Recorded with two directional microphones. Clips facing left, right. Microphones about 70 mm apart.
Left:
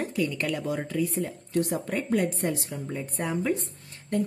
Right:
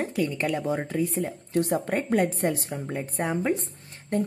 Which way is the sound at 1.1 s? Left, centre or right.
Right.